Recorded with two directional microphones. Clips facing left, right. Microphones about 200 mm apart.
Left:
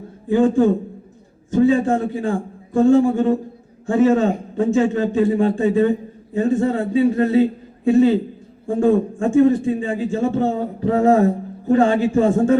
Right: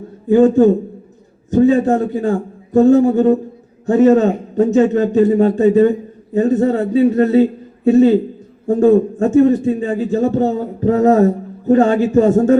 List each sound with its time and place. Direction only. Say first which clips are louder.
0.3 s a man's voice: right 5 dB; 40° right (ahead or behind)